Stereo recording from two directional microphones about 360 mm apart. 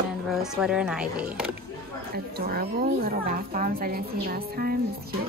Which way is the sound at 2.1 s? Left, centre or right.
Right.